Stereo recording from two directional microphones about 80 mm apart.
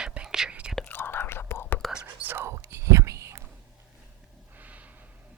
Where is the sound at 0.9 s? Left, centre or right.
Left.